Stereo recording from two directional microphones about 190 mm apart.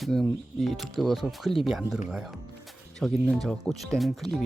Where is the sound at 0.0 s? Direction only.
Centre (ahead or behind).